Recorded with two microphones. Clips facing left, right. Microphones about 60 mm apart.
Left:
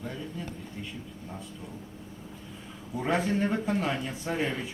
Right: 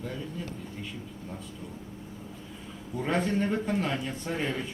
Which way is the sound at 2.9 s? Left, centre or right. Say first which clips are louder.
Even; centre.